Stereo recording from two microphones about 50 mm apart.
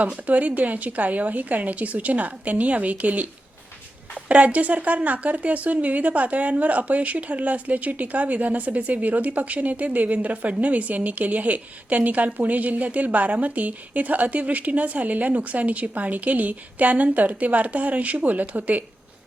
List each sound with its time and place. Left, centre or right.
0.3 s a woman's voice: right
4.3 s a woman's voice: right